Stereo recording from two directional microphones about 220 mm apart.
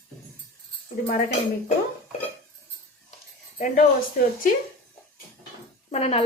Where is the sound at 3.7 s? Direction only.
40° left (ahead or behind).